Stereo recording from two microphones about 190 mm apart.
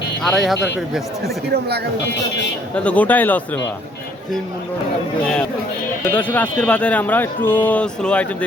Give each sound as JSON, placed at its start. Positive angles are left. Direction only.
{"t": 0.2, "sound": "speech", "side_deg": 0}
{"t": 1.5, "sound": "speech", "side_deg": -60}
{"t": 2.7, "sound": "speech", "side_deg": 5}
{"t": 6.1, "sound": "speech", "side_deg": 10}